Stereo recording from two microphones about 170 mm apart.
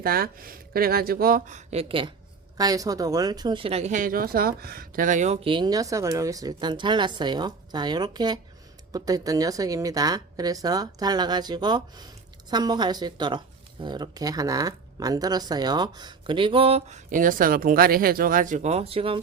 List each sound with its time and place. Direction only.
0.0 s speech: 60° right (ahead or behind); by 19.2 s 30° right (ahead or behind)